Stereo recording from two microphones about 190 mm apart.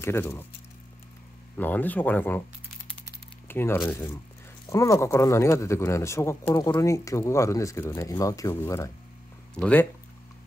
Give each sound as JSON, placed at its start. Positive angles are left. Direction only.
{"t": 0.0, "sound": "speech", "side_deg": 15}
{"t": 1.6, "sound": "speech", "side_deg": 10}
{"t": 3.4, "sound": "speech", "side_deg": 10}